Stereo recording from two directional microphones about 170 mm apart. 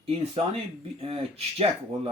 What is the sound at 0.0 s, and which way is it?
Speech, 35° right (ahead or behind).